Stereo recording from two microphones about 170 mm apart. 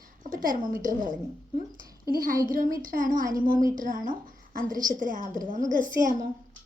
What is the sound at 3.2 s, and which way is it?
Speech, 20° right (ahead or behind).